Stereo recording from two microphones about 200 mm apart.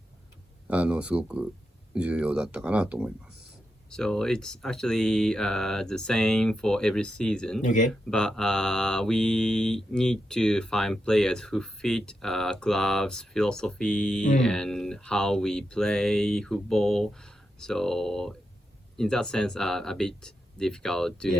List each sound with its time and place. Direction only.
0.7 s mantra: 5° right (ahead or behind)
7.6 s speech: 40° left (ahead or behind)
8.0 s mantra: 5° left (ahead or behind)